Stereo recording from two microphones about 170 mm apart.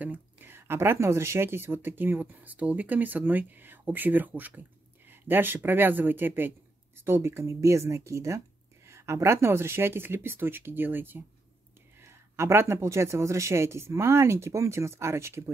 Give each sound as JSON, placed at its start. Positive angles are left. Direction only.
{"t": 0.0, "sound": "speech", "side_deg": -10}